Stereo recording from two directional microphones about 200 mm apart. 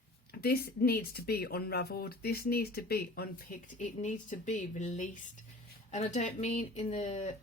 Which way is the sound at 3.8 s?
40° left (ahead or behind).